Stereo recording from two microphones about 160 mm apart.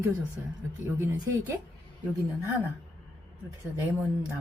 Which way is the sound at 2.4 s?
15° right (ahead or behind).